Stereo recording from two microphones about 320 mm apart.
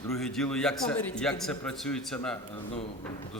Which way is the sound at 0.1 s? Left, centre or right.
Centre.